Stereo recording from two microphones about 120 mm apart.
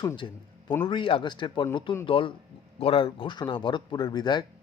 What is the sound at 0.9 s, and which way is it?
Speech, 45° left (ahead or behind).